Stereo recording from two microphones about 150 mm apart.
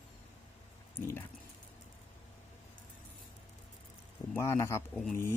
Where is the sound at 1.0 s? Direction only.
20° left (ahead or behind).